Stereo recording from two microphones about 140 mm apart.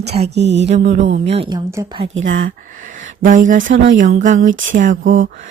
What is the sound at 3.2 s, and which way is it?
Speech, 75° right (ahead or behind).